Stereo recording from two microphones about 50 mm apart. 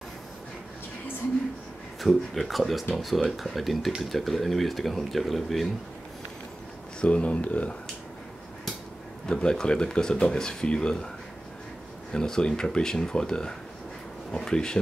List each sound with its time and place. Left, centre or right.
2.0 s speech: centre
7.0 s speech: left
9.2 s speech: centre
12.1 s speech: centre